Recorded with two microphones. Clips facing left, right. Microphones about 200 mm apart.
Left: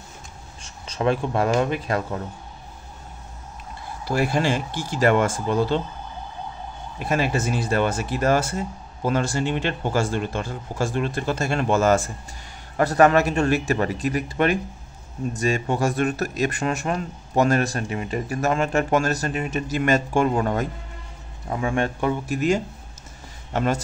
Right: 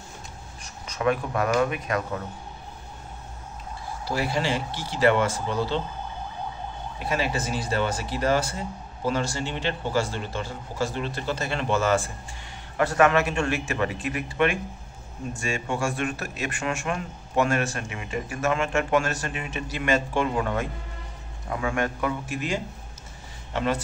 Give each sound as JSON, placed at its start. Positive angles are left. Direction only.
{"t": 0.6, "sound": "speech", "side_deg": 30}
{"t": 4.0, "sound": "a man's voice", "side_deg": 50}
{"t": 7.1, "sound": "a man's voice", "side_deg": 50}
{"t": 21.5, "sound": "a man's voice", "side_deg": 25}